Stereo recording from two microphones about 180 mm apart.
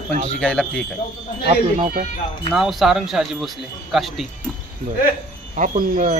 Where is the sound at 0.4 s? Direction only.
5° left (ahead or behind).